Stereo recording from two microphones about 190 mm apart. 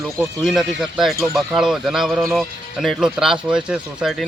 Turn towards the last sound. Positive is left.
turn(degrees=-5)  # may be behind; listen again after turning